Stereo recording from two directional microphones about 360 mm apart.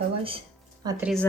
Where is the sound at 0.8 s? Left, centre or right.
Centre.